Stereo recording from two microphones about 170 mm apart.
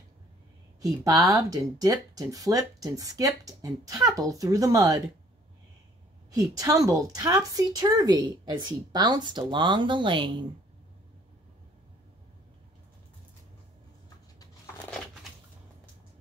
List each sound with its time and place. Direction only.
0.7 s speech: 20° right (ahead or behind)
6.3 s speech: 20° right (ahead or behind)